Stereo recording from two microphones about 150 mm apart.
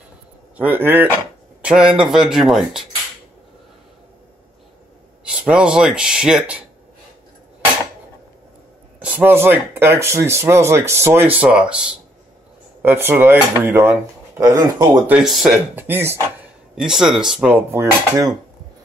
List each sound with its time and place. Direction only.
0.6 s speech: 10° right (ahead or behind)
5.2 s speech: 5° right (ahead or behind)
9.0 s speech: 10° right (ahead or behind)
11.3 s speech: 5° right (ahead or behind)
15.0 s speech: 10° right (ahead or behind)